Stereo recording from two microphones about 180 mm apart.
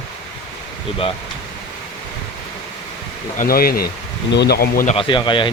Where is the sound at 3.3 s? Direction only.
50° left (ahead or behind).